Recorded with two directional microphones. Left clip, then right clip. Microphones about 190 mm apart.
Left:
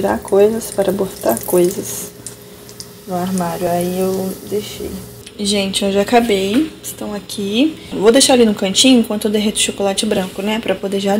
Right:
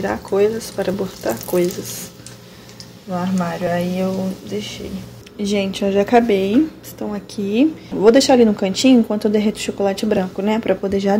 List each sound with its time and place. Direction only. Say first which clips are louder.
0.0 s speech: left 5 dB; 5° left (ahead or behind)
3.1 s speech: left 3 dB; 10° left (ahead or behind)
5.4 s speech: left 3 dB; 10° right (ahead or behind)